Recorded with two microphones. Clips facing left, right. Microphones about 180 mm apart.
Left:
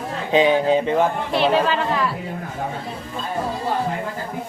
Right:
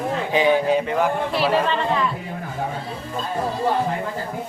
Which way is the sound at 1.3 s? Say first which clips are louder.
Left 4 dB; centre (ahead or behind).